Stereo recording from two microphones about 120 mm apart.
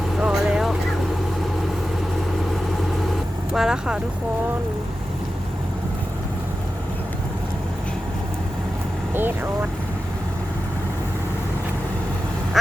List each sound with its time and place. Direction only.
0.2 s vehicle: 5° right (ahead or behind)
3.5 s speech: 5° right (ahead or behind)
9.1 s speech: 15° right (ahead or behind)